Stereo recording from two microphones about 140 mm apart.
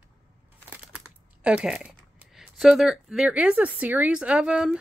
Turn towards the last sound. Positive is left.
turn(degrees=-5)  # may be behind; listen again after turning